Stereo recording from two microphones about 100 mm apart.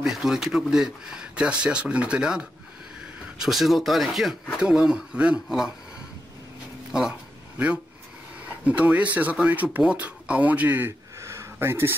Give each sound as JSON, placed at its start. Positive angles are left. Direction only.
{"t": 0.0, "sound": "speech", "side_deg": -5}
{"t": 6.9, "sound": "a sound", "side_deg": -10}
{"t": 8.6, "sound": "speech", "side_deg": -15}